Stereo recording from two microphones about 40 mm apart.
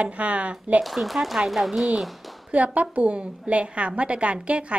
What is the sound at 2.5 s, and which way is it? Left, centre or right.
Speech, right.